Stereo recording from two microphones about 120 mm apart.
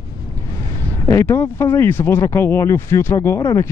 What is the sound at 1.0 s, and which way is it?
Speech, 25° left (ahead or behind).